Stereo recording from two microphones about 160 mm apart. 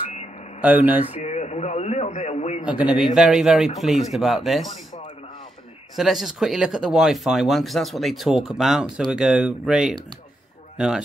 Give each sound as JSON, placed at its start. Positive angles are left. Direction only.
{"t": 0.1, "sound": "a sound", "side_deg": 45}
{"t": 0.6, "sound": "speech", "side_deg": -10}
{"t": 1.2, "sound": "a man's voice", "side_deg": 45}
{"t": 2.6, "sound": "a man's voice", "side_deg": -10}
{"t": 5.9, "sound": "speech", "side_deg": 0}